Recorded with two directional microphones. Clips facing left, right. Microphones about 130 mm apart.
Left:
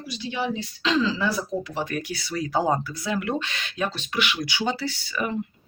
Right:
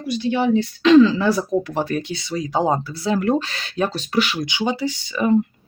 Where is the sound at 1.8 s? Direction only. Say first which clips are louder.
Right 5 dB; 25° right (ahead or behind).